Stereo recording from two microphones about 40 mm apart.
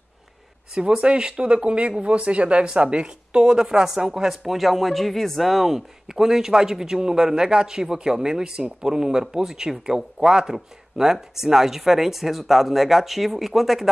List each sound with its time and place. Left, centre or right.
0.7 s speech: right; by 13.8 s centre